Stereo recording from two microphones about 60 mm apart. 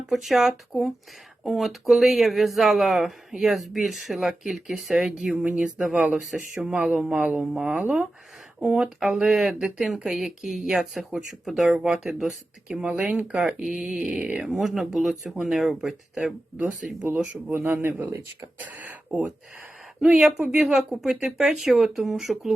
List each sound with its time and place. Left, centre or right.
0.1 s speech: centre
7.3 s speech: centre
12.7 s speech: centre
17.0 s speech: right
20.2 s speech: centre